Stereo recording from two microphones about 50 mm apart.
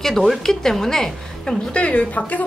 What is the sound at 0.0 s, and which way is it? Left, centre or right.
A woman's voice, centre.